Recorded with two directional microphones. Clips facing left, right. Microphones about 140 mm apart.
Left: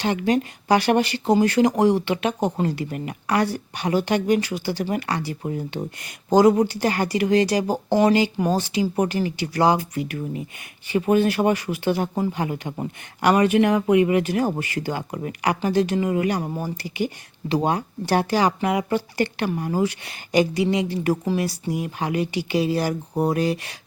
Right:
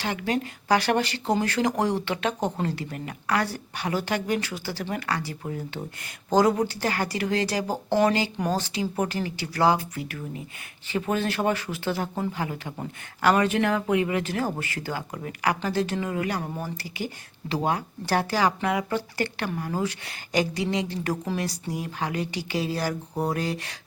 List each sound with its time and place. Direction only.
0.0 s speech: 20° left (ahead or behind)